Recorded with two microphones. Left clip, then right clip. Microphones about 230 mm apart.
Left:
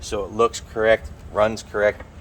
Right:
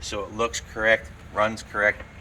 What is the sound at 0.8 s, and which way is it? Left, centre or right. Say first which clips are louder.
Speech: left 3 dB; left.